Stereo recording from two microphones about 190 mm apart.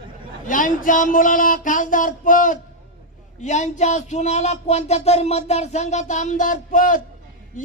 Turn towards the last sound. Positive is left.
turn(degrees=45)  # may be behind; listen again after turning